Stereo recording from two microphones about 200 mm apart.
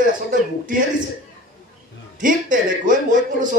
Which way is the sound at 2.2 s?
40° right (ahead or behind).